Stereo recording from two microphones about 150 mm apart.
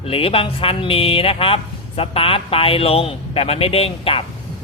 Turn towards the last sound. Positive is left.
turn(degrees=40)  # may be behind; listen again after turning